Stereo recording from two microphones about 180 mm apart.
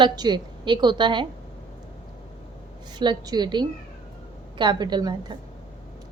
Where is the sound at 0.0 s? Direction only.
25° right (ahead or behind).